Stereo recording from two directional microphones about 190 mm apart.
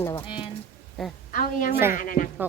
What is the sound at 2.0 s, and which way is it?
Speech, 45° left (ahead or behind).